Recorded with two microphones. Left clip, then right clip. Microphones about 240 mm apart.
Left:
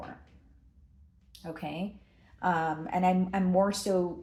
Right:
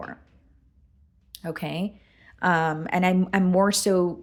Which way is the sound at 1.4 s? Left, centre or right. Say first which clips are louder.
Right 6 dB; right.